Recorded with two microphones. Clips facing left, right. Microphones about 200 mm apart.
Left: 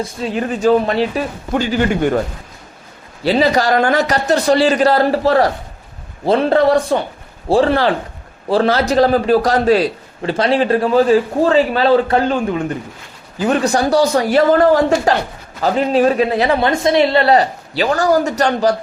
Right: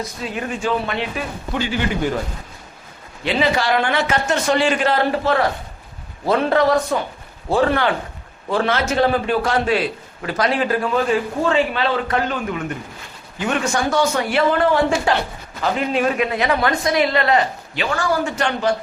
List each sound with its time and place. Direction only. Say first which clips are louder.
0.0 s a man's voice: left 6 dB; 35° left (ahead or behind)
3.2 s a man's voice: left 5 dB; 35° left (ahead or behind)